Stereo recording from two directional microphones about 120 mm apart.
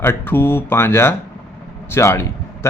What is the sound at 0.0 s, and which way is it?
Speech, 20° left (ahead or behind).